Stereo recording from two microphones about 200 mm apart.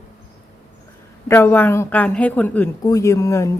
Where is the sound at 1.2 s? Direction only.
10° left (ahead or behind).